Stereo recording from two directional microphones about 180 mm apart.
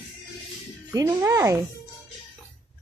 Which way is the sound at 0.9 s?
15° right (ahead or behind).